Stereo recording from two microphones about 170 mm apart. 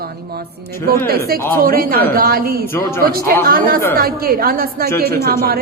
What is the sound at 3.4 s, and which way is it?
A woman's voice, 60° right (ahead or behind).